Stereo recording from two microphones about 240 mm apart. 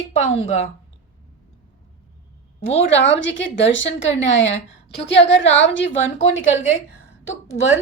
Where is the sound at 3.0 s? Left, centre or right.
Left.